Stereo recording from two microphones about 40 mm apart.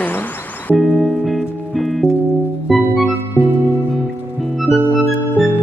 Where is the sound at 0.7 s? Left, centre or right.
Centre.